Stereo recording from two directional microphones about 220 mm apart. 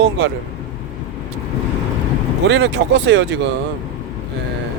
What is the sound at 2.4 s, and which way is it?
Speech, 55° right (ahead or behind).